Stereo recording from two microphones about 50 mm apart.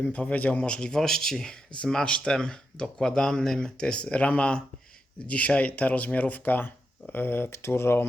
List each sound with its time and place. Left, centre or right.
0.0 s a man's voice: left
0.9 s speech: centre; by 8.0 s left